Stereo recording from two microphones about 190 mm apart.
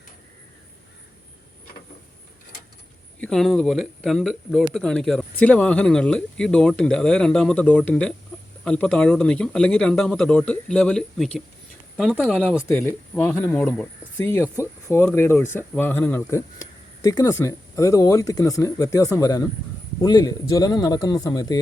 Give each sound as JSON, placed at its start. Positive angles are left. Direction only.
{"t": 3.2, "sound": "speech", "side_deg": 5}